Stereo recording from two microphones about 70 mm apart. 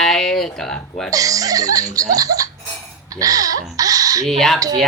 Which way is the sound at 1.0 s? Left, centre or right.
Right.